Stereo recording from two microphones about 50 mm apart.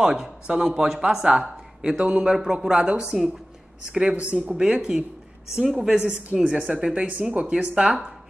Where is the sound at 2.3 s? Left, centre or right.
Centre.